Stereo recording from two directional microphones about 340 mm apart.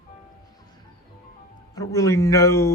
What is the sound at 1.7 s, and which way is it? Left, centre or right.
Speech, centre.